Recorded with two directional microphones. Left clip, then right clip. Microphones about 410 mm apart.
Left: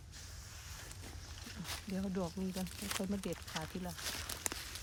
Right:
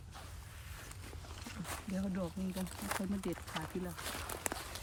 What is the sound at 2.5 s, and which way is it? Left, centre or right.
Speech, centre.